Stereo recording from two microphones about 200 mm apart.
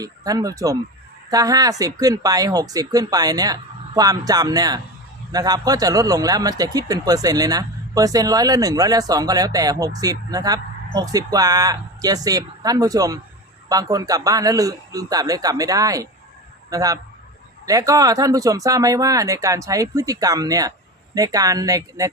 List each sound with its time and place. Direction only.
0.0 s speech: 20° right (ahead or behind)